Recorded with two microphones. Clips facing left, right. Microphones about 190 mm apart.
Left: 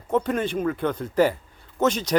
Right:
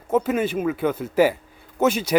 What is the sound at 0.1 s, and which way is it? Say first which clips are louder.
A man's voice: right 2 dB; 5° right (ahead or behind).